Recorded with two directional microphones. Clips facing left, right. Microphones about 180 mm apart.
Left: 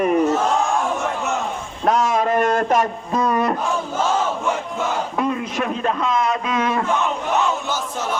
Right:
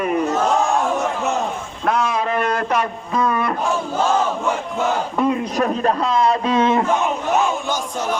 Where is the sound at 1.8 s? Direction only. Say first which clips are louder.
Left 2 dB; 40° left (ahead or behind).